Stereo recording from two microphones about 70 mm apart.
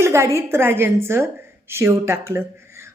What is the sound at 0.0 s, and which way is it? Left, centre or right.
A woman's voice, right.